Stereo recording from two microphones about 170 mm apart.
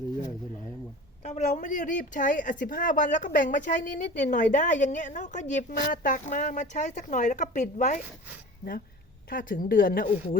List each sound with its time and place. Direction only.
1.2 s speech: 45° left (ahead or behind)
9.3 s speech: 55° left (ahead or behind)